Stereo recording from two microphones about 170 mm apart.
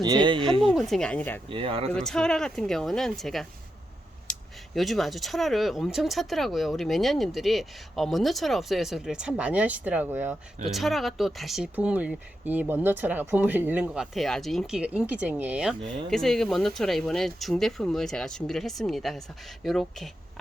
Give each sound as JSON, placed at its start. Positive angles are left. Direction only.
{"t": 0.0, "sound": "speech", "side_deg": -25}
{"t": 0.6, "sound": "speech", "side_deg": 0}
{"t": 1.5, "sound": "speech", "side_deg": -30}
{"t": 1.9, "sound": "speech", "side_deg": 5}
{"t": 10.7, "sound": "speech", "side_deg": 0}
{"t": 16.0, "sound": "speech", "side_deg": 5}